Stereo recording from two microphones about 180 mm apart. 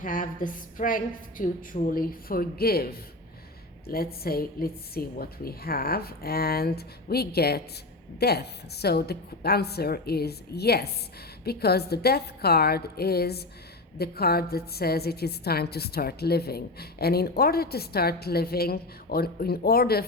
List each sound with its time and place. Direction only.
0.0 s a woman's voice: 50° left (ahead or behind)